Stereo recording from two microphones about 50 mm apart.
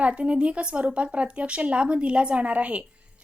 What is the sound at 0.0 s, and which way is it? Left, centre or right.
Speech, right.